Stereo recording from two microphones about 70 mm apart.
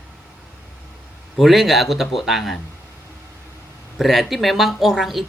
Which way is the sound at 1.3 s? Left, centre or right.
Centre.